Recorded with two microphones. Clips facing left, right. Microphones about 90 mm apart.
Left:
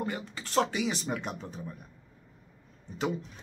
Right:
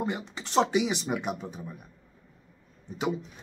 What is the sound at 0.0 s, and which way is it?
Speech, 25° right (ahead or behind).